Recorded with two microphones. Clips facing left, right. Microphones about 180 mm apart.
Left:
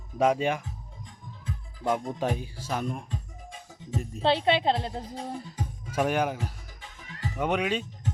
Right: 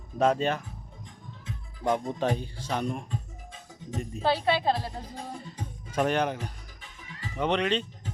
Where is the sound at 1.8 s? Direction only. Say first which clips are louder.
Right 1 dB; 10° left (ahead or behind).